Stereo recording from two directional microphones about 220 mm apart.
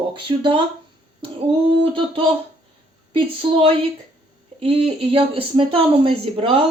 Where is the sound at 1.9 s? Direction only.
25° right (ahead or behind).